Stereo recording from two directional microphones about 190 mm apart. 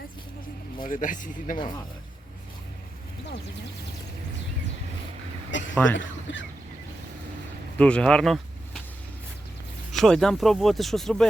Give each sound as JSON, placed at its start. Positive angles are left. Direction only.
{"t": 0.9, "sound": "speech", "side_deg": 45}
{"t": 5.5, "sound": "a sound", "side_deg": 75}
{"t": 5.7, "sound": "speech", "side_deg": 5}
{"t": 6.3, "sound": "a sound", "side_deg": 70}
{"t": 7.8, "sound": "speech", "side_deg": 5}
{"t": 9.9, "sound": "speech", "side_deg": 0}